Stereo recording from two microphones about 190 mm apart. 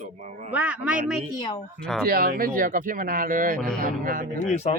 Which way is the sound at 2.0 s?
50° right (ahead or behind).